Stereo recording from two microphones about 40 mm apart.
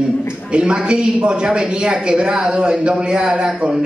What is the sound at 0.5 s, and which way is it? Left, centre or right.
A man's voice, right.